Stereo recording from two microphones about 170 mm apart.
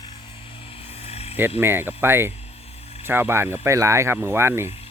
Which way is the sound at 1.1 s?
35° left (ahead or behind).